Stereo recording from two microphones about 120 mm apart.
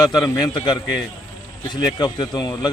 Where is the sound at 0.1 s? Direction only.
30° left (ahead or behind).